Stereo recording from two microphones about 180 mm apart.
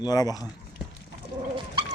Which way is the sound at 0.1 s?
20° left (ahead or behind).